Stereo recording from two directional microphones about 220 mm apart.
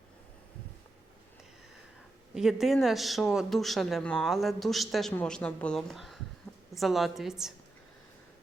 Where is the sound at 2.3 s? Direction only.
Centre (ahead or behind).